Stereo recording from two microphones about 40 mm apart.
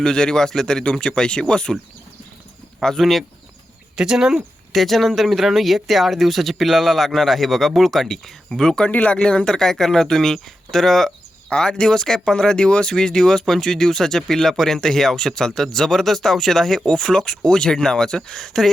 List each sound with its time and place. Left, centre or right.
0.0 s speech: centre
3.0 s speech: centre
3.9 s speech: centre
4.7 s speech: centre
8.9 s speech: left
9.1 s speech: left
9.5 s speech: centre
11.4 s speech: centre